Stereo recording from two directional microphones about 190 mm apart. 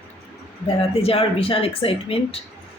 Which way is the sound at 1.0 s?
30° left (ahead or behind).